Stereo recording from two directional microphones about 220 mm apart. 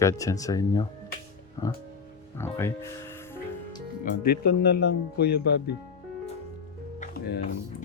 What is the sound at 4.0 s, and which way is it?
Speech, 40° left (ahead or behind).